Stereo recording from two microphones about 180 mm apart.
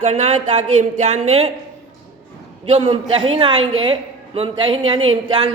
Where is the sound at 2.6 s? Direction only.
35° right (ahead or behind).